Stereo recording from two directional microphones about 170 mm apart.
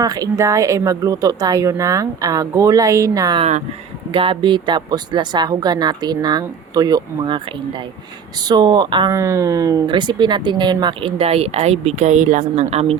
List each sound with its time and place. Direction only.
0.0 s speech: 20° right (ahead or behind); by 13.0 s 40° right (ahead or behind)